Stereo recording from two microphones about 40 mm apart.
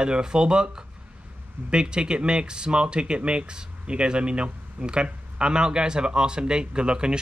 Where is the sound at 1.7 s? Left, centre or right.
Right.